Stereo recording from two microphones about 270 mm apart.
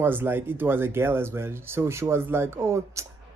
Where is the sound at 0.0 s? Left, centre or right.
Centre.